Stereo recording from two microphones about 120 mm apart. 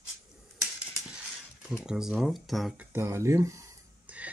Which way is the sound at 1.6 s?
5° right (ahead or behind).